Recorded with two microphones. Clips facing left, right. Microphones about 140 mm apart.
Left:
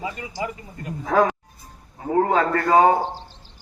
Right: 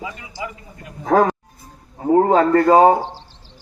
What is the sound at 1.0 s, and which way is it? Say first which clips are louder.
A man's voice: right 4 dB; 45° right (ahead or behind).